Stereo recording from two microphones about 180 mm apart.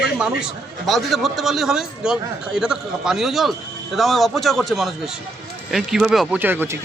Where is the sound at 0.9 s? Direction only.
Centre (ahead or behind).